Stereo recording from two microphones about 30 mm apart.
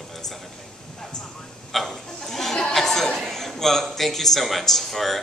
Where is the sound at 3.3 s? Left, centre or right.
Centre.